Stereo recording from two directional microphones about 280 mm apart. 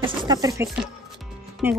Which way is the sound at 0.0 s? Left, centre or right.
Centre.